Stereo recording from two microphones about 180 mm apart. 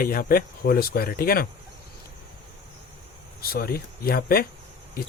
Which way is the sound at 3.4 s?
60° left (ahead or behind).